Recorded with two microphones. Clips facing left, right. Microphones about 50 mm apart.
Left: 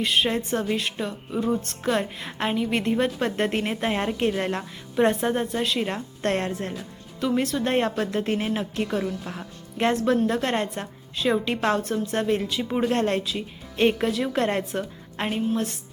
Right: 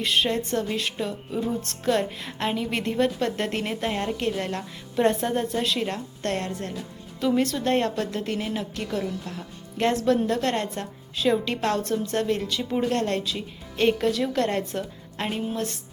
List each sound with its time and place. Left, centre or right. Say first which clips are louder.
0.0 s speech: left 1 dB; centre; by 4.6 s left
4.9 s speech: left 1 dB; centre
5.9 s a woman's voice: left 3 dB; left
7.2 s a woman's voice: right 1 dB; centre; by 9.5 s left
9.7 s a woman's voice: even; centre